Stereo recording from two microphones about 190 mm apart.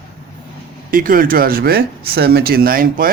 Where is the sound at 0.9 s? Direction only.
50° right (ahead or behind).